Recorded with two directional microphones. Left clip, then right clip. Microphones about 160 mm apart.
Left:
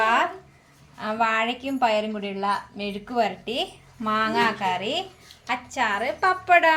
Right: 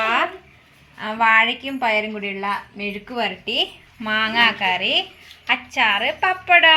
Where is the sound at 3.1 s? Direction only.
Centre (ahead or behind).